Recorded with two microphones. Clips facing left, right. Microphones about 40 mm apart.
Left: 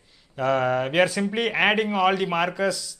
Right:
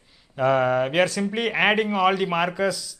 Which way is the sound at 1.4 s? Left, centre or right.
Centre.